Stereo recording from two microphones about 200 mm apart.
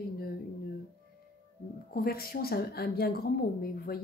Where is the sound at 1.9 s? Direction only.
50° left (ahead or behind).